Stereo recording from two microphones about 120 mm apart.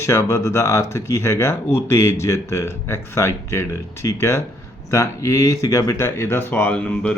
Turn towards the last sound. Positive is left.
turn(degrees=10)  # may be behind; listen again after turning